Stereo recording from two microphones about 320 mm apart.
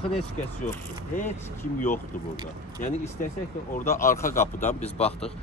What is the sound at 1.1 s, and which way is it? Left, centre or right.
Speech, centre.